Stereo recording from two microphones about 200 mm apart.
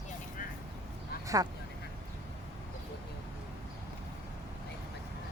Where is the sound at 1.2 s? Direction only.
15° right (ahead or behind).